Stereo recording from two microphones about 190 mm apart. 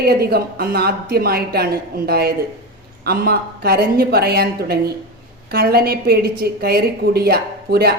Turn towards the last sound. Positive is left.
turn(degrees=-55)  # may be behind; listen again after turning